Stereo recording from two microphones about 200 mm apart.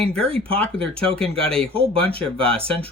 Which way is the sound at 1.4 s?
5° left (ahead or behind).